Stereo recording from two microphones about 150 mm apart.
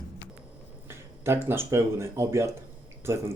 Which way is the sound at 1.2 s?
15° right (ahead or behind).